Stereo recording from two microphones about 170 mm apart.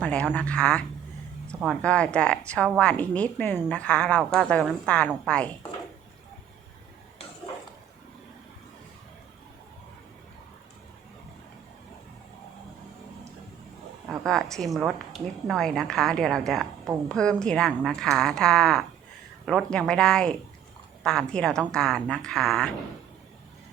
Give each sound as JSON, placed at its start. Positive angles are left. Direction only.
{"t": 0.0, "sound": "a woman's voice", "side_deg": 5}
{"t": 14.1, "sound": "a woman's voice", "side_deg": 5}